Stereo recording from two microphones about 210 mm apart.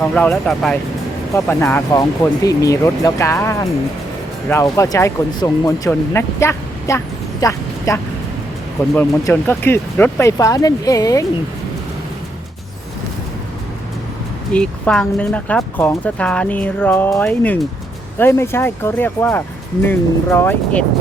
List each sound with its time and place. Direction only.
0.0 s speech: 5° left (ahead or behind)
14.5 s speech: 5° left (ahead or behind)